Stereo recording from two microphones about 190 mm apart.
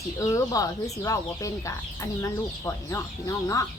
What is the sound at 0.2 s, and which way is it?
Speech, 15° left (ahead or behind).